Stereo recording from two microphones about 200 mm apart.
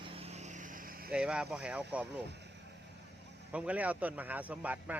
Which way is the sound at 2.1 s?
60° right (ahead or behind).